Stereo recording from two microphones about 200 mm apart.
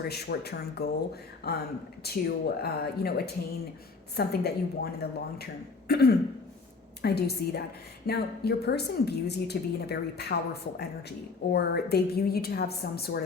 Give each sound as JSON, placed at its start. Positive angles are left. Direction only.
{"t": 0.0, "sound": "a woman's voice", "side_deg": 55}